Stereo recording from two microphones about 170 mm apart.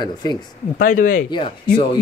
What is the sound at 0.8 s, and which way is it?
Speech, 55° left (ahead or behind).